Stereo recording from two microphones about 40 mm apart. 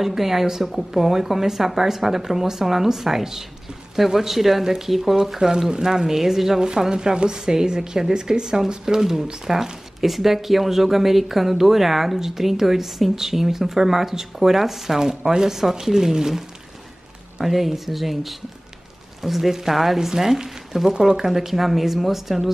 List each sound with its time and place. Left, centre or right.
0.0 s speech: centre
5.5 s speech: centre